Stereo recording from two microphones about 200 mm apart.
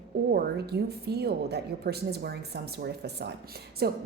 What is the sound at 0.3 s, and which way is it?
A woman's voice, 50° right (ahead or behind).